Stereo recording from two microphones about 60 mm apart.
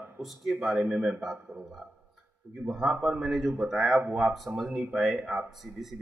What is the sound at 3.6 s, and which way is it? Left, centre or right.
A man's voice, centre.